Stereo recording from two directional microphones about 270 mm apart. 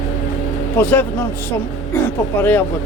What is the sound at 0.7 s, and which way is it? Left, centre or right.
Speech, centre.